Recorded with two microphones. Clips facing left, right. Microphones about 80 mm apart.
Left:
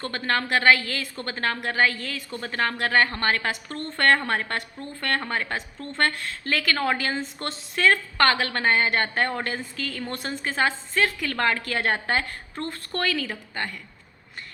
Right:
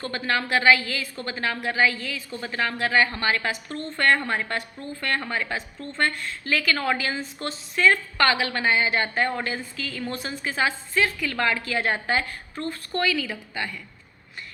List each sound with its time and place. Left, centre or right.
0.0 s a woman's voice: left